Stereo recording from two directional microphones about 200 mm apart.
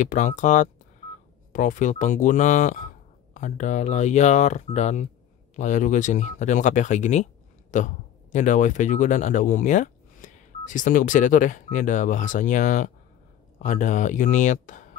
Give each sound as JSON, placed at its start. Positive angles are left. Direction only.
{"t": 0.0, "sound": "speech", "side_deg": 40}